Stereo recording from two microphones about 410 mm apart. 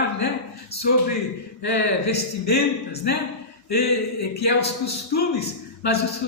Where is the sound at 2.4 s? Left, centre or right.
Left.